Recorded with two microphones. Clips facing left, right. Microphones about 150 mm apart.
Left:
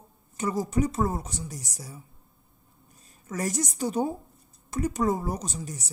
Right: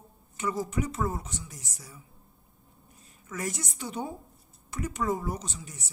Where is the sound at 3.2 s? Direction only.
40° left (ahead or behind).